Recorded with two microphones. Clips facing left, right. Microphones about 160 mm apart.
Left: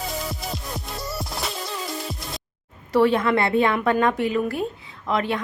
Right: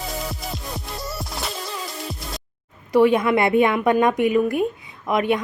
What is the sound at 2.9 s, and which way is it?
Speech, 15° right (ahead or behind).